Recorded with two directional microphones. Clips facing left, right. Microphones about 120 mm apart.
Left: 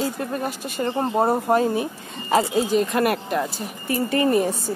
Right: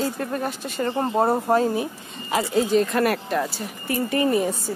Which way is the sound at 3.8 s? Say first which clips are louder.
Left 1 dB; 30° left (ahead or behind).